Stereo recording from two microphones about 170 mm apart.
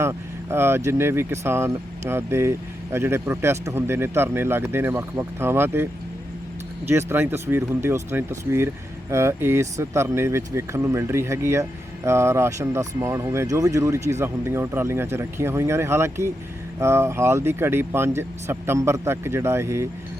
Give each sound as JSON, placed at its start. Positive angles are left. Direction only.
{"t": 0.0, "sound": "speech", "side_deg": -15}